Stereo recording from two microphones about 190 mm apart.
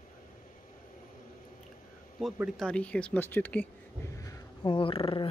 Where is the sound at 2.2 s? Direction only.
Centre (ahead or behind).